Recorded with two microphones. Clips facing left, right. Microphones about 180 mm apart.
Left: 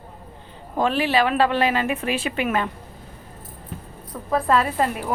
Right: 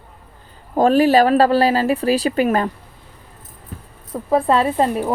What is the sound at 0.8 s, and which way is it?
Speech, 40° right (ahead or behind).